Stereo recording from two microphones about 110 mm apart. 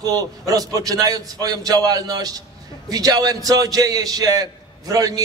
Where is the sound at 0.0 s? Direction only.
35° right (ahead or behind).